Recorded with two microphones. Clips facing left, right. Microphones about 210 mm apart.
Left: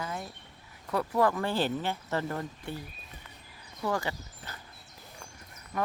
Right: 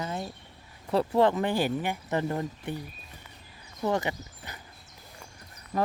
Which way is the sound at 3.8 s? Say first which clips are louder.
Right 3 dB; 20° right (ahead or behind).